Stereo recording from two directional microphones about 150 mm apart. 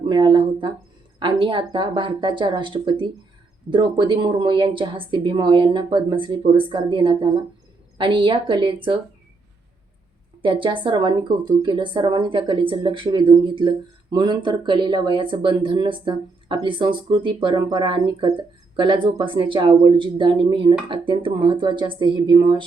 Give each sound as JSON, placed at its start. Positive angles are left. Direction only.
{"t": 0.0, "sound": "speech", "side_deg": -30}
{"t": 10.4, "sound": "speech", "side_deg": -35}